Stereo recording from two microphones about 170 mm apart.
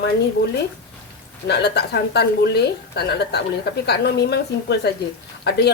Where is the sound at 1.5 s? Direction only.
80° left.